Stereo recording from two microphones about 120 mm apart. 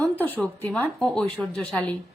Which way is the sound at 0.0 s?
15° left (ahead or behind).